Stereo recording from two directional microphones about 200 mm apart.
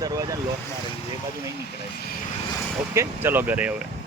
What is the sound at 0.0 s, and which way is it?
Vehicle, 15° right (ahead or behind).